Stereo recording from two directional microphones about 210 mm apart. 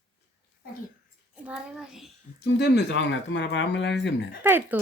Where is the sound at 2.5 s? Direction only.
55° left (ahead or behind).